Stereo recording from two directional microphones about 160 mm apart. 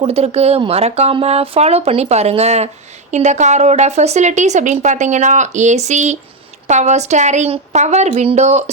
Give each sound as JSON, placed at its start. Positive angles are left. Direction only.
{"t": 0.0, "sound": "speech", "side_deg": -40}